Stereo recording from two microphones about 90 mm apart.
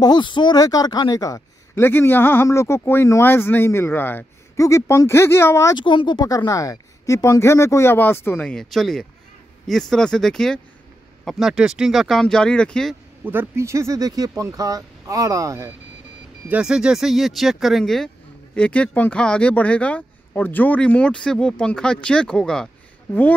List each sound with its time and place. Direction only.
0.0 s speech: 55° left (ahead or behind)
1.8 s speech: 25° left (ahead or behind)
4.6 s speech: 35° left (ahead or behind)
5.8 s speech: 60° left (ahead or behind)
6.2 s speech: 40° left (ahead or behind); by 8.4 s 25° left (ahead or behind)
8.4 s speech: 10° left (ahead or behind)
13.2 s speech: 20° right (ahead or behind)
16.4 s speech: 10° right (ahead or behind)
18.5 s speech: 15° left (ahead or behind)